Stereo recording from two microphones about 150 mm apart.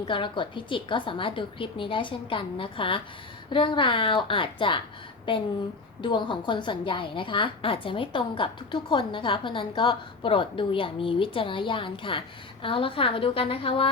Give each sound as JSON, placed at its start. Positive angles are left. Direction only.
{"t": 0.0, "sound": "a woman's voice", "side_deg": 35}